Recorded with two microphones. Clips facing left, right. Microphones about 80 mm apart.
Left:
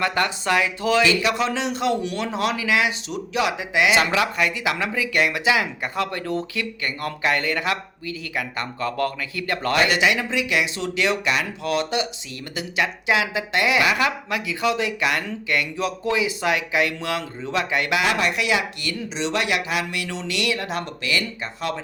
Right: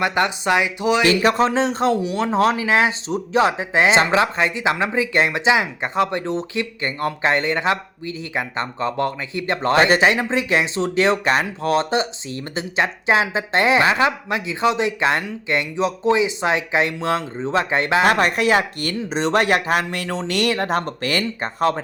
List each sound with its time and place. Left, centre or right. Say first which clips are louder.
0.0 s speech: right 3 dB; right
1.0 s speech: right 4 dB; right
18.1 s speech: right 5 dB; right